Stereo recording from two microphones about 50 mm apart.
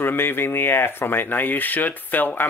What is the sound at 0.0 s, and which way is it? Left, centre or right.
Speech, left.